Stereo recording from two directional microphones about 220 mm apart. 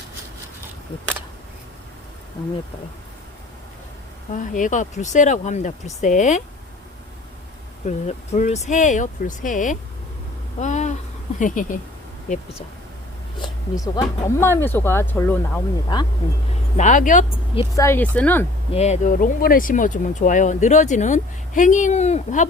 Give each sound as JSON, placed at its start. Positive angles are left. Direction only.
{"t": 4.3, "sound": "speech", "side_deg": 35}
{"t": 7.9, "sound": "speech", "side_deg": 30}
{"t": 13.4, "sound": "speech", "side_deg": 15}
{"t": 16.7, "sound": "speech", "side_deg": 35}
{"t": 17.8, "sound": "speech", "side_deg": 10}
{"t": 18.7, "sound": "speech", "side_deg": 30}